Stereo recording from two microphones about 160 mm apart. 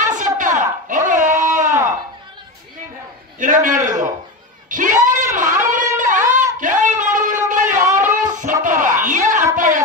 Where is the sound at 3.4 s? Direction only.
55° right (ahead or behind).